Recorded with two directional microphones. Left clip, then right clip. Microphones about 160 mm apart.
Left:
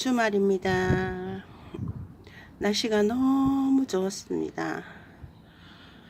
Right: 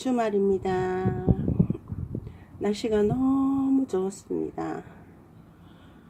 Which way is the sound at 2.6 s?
5° right (ahead or behind).